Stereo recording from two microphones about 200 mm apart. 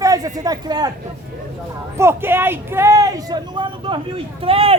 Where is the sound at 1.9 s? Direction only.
15° right (ahead or behind).